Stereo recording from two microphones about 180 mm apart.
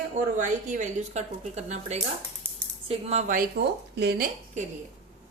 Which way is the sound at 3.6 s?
65° right (ahead or behind).